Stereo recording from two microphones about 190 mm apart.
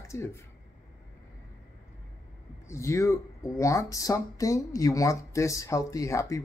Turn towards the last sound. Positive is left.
turn(degrees=15)  # may be behind; listen again after turning